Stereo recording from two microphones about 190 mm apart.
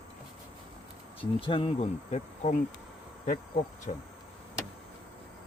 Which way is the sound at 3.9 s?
40° left (ahead or behind).